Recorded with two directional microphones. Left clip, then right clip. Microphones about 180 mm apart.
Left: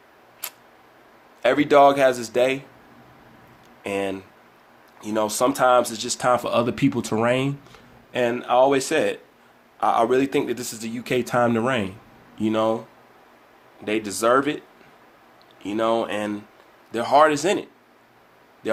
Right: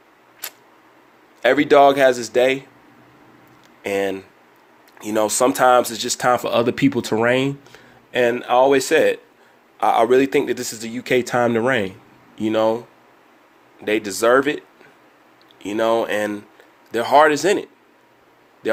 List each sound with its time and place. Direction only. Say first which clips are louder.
0.4 s tick-tock: right 3 dB; 25° right (ahead or behind)
1.4 s speech: right 3 dB; 30° right (ahead or behind)
3.8 s speech: right 5 dB; 30° right (ahead or behind)
4.9 s speech: right 4 dB; 40° right (ahead or behind)
13.8 s speech: right 4 dB; 30° right (ahead or behind)
15.6 s speech: right 3 dB; 35° right (ahead or behind)